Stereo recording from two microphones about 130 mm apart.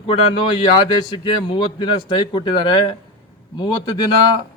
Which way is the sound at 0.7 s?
40° left (ahead or behind).